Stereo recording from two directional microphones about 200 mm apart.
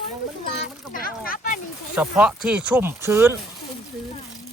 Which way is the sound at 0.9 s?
45° left (ahead or behind).